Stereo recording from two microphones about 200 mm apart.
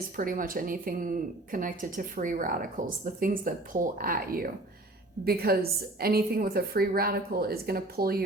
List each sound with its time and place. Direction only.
0.2 s speech: 45° right (ahead or behind)